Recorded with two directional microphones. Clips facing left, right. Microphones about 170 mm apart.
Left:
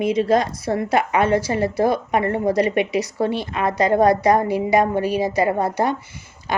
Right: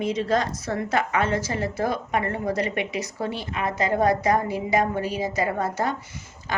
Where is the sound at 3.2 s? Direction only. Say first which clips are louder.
Left 7 dB; 70° left (ahead or behind).